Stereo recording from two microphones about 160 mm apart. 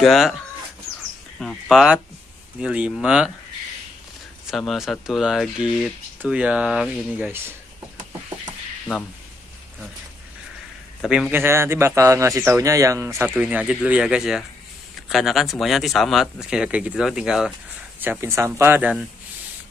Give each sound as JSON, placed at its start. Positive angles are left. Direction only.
{"t": 0.0, "sound": "speech", "side_deg": 0}
{"t": 1.4, "sound": "speech", "side_deg": 0}
{"t": 4.5, "sound": "speech", "side_deg": 0}
{"t": 11.0, "sound": "speech", "side_deg": -5}
{"t": 11.4, "sound": "speech", "side_deg": -15}